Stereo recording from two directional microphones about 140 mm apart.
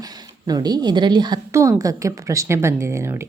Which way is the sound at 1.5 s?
20° right (ahead or behind).